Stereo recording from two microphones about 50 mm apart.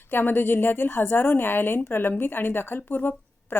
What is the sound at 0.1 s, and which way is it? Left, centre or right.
A woman's voice, left.